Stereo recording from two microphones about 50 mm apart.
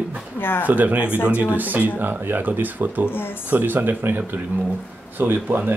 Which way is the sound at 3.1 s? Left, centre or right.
Left.